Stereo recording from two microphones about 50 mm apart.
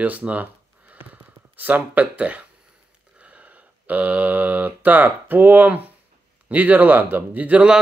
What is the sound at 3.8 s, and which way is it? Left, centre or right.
Speech, right.